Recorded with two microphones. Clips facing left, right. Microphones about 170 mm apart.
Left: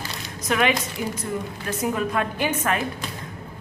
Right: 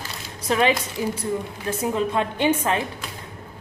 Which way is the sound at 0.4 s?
30° right (ahead or behind).